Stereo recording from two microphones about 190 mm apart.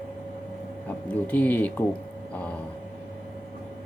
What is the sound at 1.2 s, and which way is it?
Speech, 10° left (ahead or behind).